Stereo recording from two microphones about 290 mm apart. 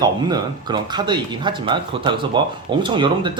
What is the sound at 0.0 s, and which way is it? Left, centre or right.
Speech, centre.